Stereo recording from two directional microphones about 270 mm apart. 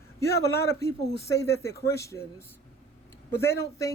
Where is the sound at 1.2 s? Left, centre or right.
Centre.